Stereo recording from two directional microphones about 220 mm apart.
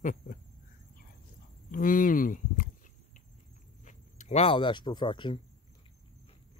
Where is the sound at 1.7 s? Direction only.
40° left (ahead or behind).